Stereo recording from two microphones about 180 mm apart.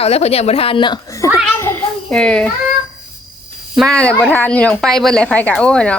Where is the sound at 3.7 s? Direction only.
5° left (ahead or behind).